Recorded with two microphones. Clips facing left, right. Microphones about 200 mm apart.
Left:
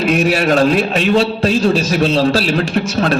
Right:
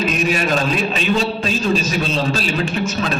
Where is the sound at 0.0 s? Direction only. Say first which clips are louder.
Left 5 dB; 70° left (ahead or behind).